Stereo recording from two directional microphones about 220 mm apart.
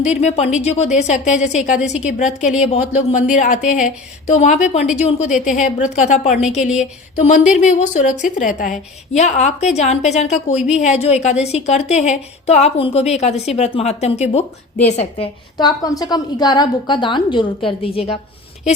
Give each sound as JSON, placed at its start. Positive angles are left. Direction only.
{"t": 0.0, "sound": "a woman's voice", "side_deg": 30}
{"t": 15.5, "sound": "a woman's voice", "side_deg": 15}